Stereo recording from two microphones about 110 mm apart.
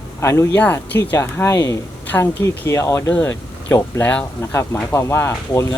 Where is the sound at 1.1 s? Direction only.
25° left (ahead or behind).